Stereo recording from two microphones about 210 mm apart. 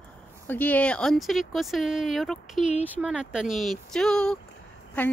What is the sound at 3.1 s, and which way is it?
Speech, 5° right (ahead or behind).